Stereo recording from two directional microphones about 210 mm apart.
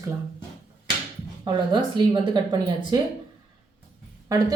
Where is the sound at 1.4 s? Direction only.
20° right (ahead or behind).